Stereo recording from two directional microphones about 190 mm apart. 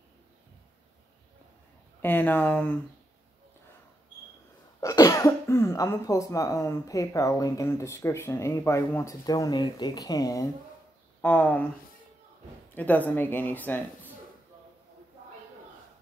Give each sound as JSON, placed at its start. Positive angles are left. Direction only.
{"t": 2.0, "sound": "speech", "side_deg": 10}
{"t": 4.7, "sound": "speech", "side_deg": 15}
{"t": 12.7, "sound": "speech", "side_deg": 10}